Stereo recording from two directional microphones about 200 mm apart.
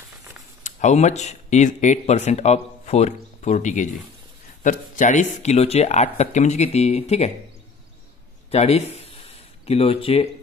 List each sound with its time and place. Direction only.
0.7 s speech: 35° left (ahead or behind)
8.5 s a man's voice: 30° left (ahead or behind)